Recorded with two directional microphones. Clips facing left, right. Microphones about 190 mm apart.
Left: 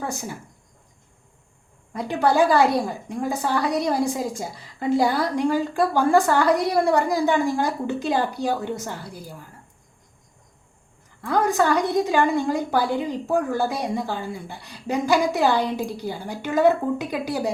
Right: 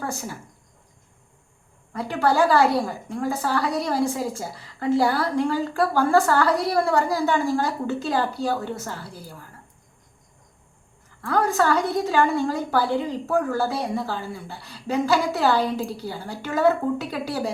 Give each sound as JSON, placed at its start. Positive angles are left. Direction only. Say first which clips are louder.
{"t": 0.0, "sound": "speech", "louder": "left 1 dB", "side_deg": 15}
{"t": 1.9, "sound": "a woman's voice", "louder": "left 1 dB", "side_deg": 20}
{"t": 11.2, "sound": "a woman's voice", "louder": "left 1 dB", "side_deg": 20}